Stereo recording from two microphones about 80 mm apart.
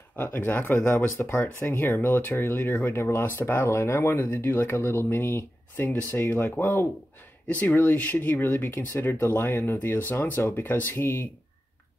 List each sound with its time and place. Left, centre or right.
0.1 s speech: left
1.3 s speech: centre
1.7 s speech: left